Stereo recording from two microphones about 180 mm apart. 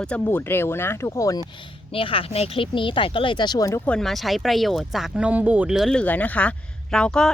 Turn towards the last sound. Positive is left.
turn(degrees=5)  # may be behind; listen again after turning